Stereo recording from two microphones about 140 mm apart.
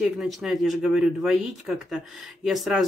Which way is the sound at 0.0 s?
Centre (ahead or behind).